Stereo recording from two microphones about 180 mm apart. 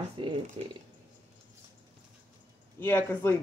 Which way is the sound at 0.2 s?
25° right (ahead or behind).